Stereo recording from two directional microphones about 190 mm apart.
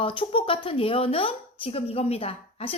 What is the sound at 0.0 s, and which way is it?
A woman's voice, 25° left (ahead or behind).